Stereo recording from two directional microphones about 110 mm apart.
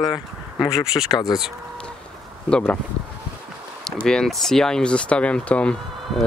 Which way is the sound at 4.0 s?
5° left (ahead or behind).